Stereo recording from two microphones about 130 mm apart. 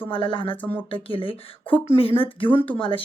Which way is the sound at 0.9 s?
40° left (ahead or behind).